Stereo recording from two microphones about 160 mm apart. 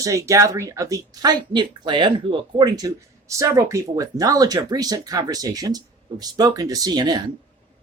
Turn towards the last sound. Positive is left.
turn(degrees=-25)  # may be behind; listen again after turning